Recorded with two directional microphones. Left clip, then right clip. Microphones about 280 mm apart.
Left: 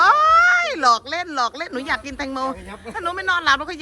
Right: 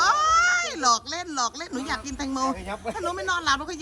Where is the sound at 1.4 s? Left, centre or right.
Centre.